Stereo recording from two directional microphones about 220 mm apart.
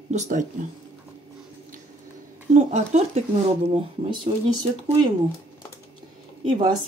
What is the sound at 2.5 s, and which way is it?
Speech, 30° right (ahead or behind).